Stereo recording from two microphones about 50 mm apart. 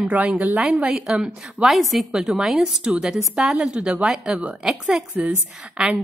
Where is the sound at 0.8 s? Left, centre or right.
Centre.